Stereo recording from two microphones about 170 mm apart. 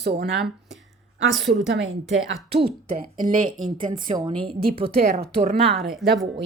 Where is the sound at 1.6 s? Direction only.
90° right.